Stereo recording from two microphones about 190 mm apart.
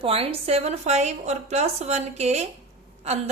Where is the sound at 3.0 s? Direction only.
35° right (ahead or behind).